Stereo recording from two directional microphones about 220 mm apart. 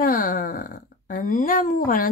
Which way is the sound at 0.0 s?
40° left (ahead or behind).